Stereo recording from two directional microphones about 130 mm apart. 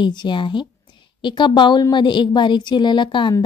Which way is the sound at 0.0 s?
35° left (ahead or behind).